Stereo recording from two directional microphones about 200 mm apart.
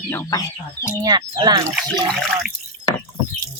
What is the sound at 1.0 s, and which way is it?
Speech, 20° right (ahead or behind).